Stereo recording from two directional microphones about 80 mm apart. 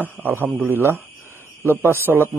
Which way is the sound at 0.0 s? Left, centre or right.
Right.